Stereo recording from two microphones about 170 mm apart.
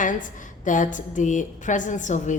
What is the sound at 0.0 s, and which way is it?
A woman's voice, 50° left (ahead or behind).